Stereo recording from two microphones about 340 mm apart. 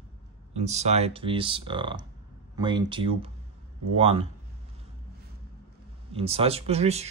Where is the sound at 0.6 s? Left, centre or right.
Centre.